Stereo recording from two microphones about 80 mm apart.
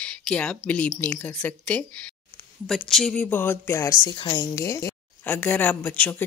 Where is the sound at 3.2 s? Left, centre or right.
Left.